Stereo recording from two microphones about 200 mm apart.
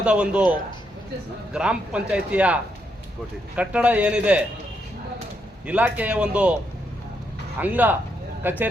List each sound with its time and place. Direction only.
0.0 s speech: 5° right (ahead or behind)
1.5 s a man's voice: 5° right (ahead or behind)
5.6 s a man's voice: 5° right (ahead or behind)
7.6 s a man's voice: 10° right (ahead or behind)